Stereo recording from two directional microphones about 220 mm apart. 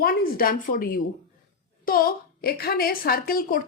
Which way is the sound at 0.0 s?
40° left (ahead or behind).